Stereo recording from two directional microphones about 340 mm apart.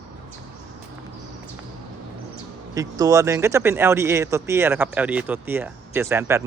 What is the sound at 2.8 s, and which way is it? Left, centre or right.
Speech, centre.